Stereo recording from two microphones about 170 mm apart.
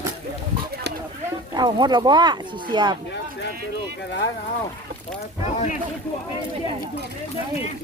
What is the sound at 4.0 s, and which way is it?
Speech, 90° left.